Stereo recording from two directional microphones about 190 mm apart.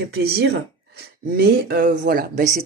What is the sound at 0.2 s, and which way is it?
Speech, 55° right (ahead or behind).